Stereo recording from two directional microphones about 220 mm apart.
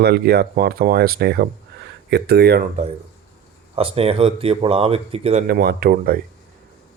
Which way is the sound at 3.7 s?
25° right (ahead or behind).